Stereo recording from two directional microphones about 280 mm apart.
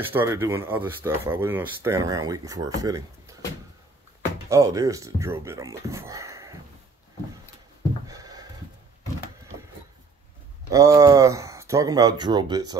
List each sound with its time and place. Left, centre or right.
0.0 s speech: centre
4.5 s speech: centre
8.1 s a sound: centre
10.7 s speech: centre